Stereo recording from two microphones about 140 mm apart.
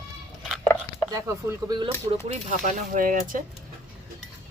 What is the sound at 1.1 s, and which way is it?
Speech, 25° right (ahead or behind).